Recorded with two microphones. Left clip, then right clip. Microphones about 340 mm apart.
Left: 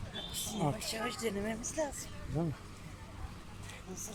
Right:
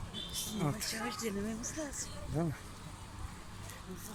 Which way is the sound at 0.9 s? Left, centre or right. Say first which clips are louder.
Left 2 dB; left.